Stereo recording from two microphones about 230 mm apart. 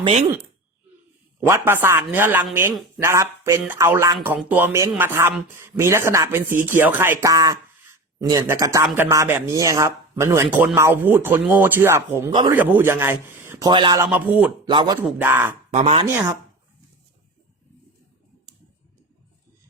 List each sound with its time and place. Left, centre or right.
0.0 s speech: right
1.4 s speech: centre
15.7 s speech: right